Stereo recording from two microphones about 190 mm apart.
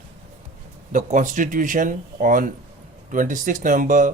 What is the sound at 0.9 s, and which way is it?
A man's voice, 40° right (ahead or behind).